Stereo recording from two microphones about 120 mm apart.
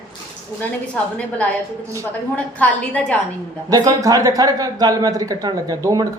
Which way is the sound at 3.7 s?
30° right (ahead or behind).